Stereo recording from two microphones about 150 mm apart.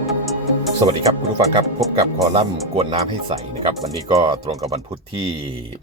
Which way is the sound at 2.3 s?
40° right (ahead or behind).